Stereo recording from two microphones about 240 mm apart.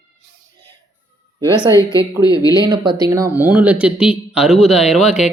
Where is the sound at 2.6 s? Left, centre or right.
Centre.